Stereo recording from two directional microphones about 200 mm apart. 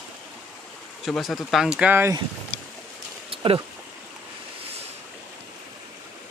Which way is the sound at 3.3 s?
25° right (ahead or behind).